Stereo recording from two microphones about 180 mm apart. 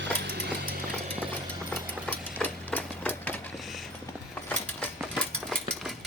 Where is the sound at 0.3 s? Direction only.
60° right (ahead or behind).